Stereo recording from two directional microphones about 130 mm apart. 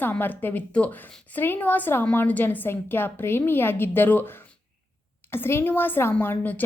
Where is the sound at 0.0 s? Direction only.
15° left (ahead or behind).